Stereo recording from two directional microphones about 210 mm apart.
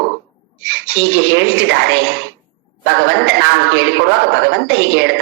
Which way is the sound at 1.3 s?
65° right (ahead or behind).